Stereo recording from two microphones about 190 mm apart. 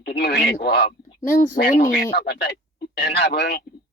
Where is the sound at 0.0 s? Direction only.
60° left (ahead or behind).